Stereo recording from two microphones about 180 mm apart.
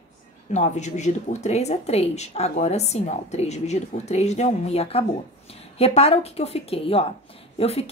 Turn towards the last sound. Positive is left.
turn(degrees=35)  # may be behind; listen again after turning